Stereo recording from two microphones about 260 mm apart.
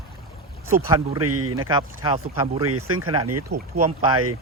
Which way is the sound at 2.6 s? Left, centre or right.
Right.